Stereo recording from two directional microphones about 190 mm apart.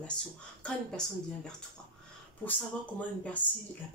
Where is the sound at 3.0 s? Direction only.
10° left (ahead or behind).